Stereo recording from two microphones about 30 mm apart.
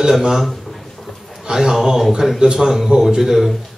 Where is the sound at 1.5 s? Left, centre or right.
Centre.